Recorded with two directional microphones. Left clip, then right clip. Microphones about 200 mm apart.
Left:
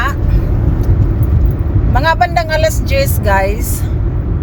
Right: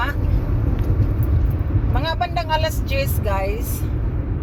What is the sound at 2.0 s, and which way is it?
Speech, 15° left (ahead or behind).